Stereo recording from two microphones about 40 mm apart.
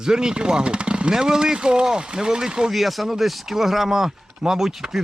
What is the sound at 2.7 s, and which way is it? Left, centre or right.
Speech, centre.